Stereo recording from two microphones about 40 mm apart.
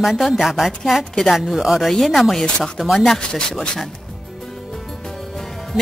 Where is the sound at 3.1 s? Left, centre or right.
Centre.